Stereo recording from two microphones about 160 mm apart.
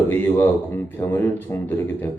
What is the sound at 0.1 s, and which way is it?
Speech, 10° left (ahead or behind).